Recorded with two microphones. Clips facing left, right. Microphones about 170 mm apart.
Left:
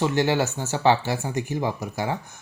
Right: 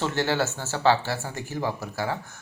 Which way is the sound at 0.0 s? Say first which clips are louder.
Left 3 dB; 15° left (ahead or behind).